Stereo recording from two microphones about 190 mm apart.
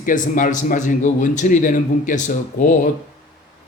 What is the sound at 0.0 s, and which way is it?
Speech, 45° left (ahead or behind).